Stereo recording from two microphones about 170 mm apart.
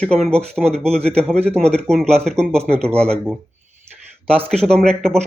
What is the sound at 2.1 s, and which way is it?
Speech, 5° left (ahead or behind).